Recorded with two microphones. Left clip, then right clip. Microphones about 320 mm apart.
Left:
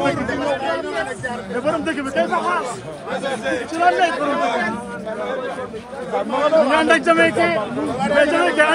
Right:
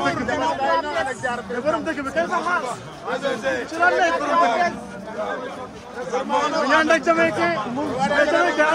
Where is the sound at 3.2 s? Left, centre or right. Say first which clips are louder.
Left 1 dB; right.